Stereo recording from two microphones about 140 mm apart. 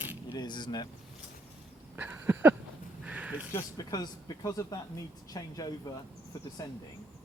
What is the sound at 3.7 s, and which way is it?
Speech, 30° left (ahead or behind).